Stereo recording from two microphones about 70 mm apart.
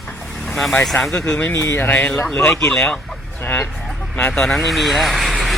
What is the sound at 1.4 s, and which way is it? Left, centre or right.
Speech, left.